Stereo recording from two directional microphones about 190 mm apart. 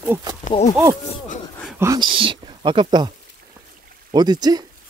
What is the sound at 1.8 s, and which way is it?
Speech, 20° right (ahead or behind).